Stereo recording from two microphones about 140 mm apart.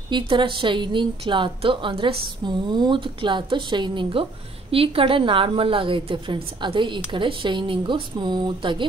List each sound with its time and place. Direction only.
0.1 s a woman's voice: 35° right (ahead or behind)